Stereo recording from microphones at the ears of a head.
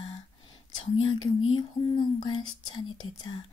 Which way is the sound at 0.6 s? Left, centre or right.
Left.